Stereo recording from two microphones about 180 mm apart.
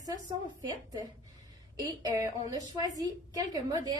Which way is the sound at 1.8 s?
20° right (ahead or behind).